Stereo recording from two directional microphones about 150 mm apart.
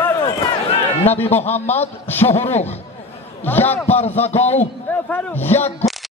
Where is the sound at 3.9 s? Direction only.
45° left (ahead or behind).